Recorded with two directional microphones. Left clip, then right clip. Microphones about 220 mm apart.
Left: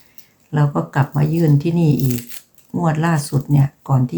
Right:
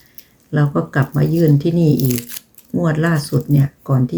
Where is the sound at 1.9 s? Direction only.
20° right (ahead or behind).